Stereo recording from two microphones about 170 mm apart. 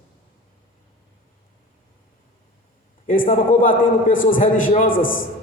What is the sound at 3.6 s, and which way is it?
A man's voice, 50° left (ahead or behind).